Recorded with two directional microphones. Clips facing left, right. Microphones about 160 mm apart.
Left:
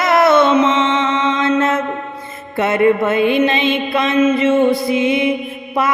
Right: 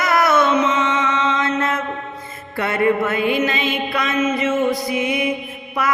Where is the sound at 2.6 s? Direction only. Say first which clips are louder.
Left 5 dB; 25° left (ahead or behind).